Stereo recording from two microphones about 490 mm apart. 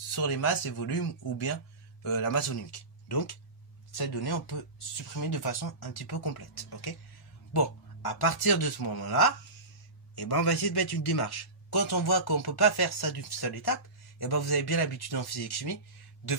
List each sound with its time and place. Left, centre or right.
0.1 s a man's voice: left
2.1 s a man's voice: left